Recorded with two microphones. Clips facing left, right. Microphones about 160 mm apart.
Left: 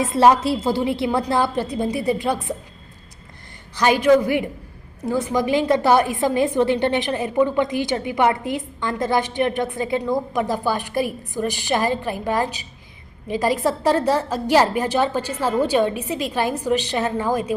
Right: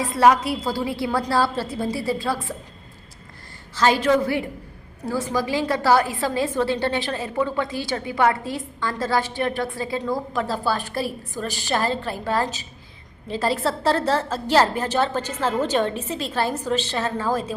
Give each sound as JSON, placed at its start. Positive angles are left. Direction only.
{"t": 0.0, "sound": "a woman's voice", "side_deg": 25}
{"t": 3.8, "sound": "a woman's voice", "side_deg": 15}